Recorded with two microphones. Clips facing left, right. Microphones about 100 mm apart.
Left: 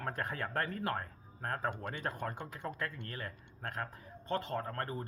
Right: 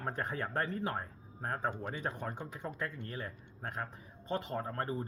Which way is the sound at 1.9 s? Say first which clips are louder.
Even; 5° right (ahead or behind).